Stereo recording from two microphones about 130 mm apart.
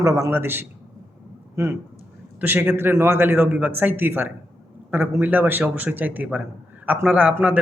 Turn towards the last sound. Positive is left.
turn(degrees=-10)  # may be behind; listen again after turning